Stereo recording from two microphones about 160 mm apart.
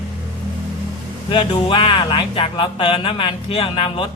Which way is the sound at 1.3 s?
30° left (ahead or behind).